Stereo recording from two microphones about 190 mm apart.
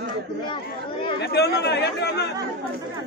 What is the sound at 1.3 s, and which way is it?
Speech, 60° left (ahead or behind).